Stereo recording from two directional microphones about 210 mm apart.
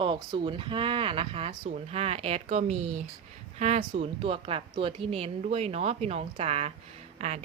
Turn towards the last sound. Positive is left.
turn(degrees=-35)  # may be behind; listen again after turning